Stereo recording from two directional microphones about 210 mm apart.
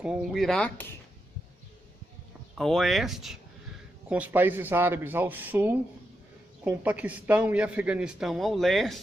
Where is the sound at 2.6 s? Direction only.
Centre (ahead or behind).